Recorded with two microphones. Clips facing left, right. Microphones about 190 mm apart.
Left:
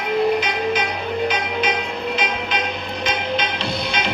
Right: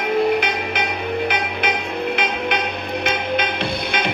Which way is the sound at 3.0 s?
55° right (ahead or behind).